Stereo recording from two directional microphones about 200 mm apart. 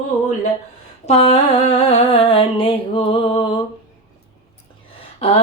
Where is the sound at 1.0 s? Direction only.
35° left (ahead or behind).